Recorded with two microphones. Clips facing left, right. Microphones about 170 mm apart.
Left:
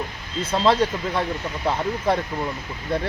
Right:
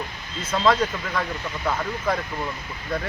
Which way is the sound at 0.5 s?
30° left (ahead or behind).